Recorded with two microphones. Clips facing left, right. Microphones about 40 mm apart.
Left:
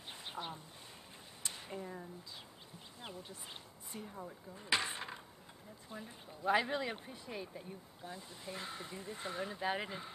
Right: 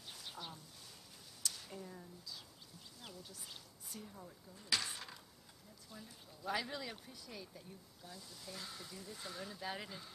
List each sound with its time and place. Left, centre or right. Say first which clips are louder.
0.1 s duck: left 6 dB; left
1.4 s a sound: left 3 dB; left
3.0 s speech: left 5 dB; left